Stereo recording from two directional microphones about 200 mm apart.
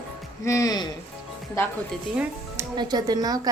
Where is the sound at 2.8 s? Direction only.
20° right (ahead or behind).